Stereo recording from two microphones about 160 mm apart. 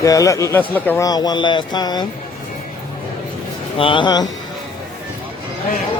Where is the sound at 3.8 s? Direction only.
30° left (ahead or behind).